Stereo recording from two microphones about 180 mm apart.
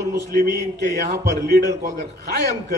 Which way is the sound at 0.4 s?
70° right (ahead or behind).